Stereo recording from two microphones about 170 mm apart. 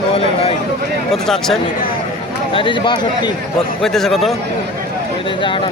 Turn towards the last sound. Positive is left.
turn(degrees=0)  # may be behind; listen again after turning